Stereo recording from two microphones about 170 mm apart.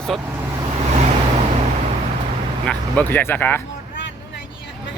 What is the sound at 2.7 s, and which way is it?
Speech, 10° left (ahead or behind).